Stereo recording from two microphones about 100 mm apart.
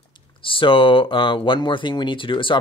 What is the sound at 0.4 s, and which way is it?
Speech, 60° left (ahead or behind).